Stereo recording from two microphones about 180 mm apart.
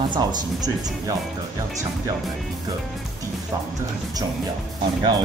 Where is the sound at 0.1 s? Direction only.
25° right (ahead or behind).